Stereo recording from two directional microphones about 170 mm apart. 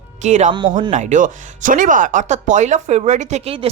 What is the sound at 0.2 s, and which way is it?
Speech, 45° right (ahead or behind).